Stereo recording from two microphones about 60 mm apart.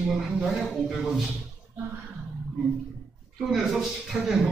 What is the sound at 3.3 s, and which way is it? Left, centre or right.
A man's voice, centre.